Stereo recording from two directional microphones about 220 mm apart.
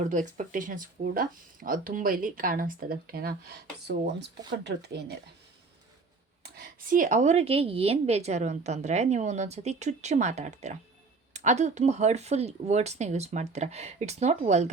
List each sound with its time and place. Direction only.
0.0 s speech: 35° right (ahead or behind)
6.4 s speech: 40° right (ahead or behind)